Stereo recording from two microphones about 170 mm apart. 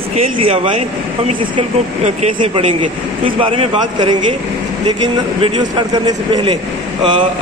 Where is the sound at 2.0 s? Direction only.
40° right (ahead or behind).